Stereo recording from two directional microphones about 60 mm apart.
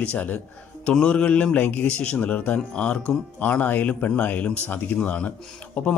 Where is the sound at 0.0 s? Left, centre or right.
Left.